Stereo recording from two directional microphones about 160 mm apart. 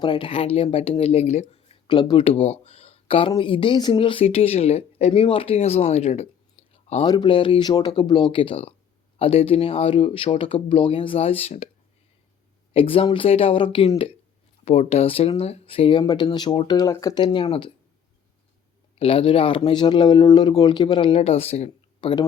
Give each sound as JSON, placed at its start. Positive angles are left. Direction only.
{"t": 0.0, "sound": "speech", "side_deg": 30}
{"t": 1.9, "sound": "speech", "side_deg": 30}
{"t": 6.6, "sound": "a sound", "side_deg": 40}
{"t": 7.0, "sound": "speech", "side_deg": 30}
{"t": 12.7, "sound": "speech", "side_deg": 35}
{"t": 18.9, "sound": "speech", "side_deg": 35}